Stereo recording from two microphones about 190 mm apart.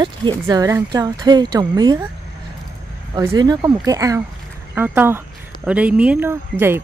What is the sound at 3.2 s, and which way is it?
Speech, 20° right (ahead or behind).